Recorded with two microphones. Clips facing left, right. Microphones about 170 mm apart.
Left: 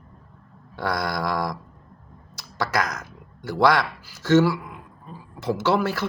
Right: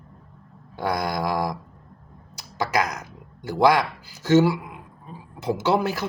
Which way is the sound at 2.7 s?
15° right (ahead or behind).